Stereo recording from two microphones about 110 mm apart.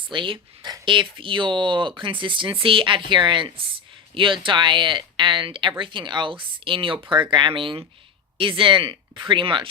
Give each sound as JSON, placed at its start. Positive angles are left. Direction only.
{"t": 0.1, "sound": "speech", "side_deg": -50}